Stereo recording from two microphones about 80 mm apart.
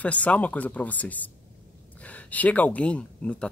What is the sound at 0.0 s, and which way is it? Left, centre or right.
Speech, centre.